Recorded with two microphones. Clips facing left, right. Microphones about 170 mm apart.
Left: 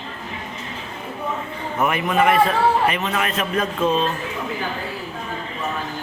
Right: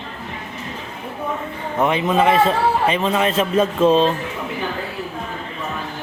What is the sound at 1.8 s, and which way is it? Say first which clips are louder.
A man's voice: right 2 dB; 25° right (ahead or behind).